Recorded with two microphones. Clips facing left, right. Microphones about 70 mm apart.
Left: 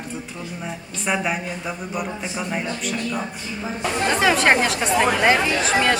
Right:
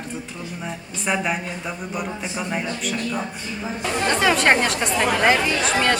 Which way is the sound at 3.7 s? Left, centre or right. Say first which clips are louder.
Even; centre.